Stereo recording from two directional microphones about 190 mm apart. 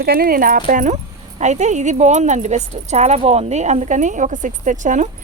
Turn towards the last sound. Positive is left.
turn(degrees=-40)  # may be behind; listen again after turning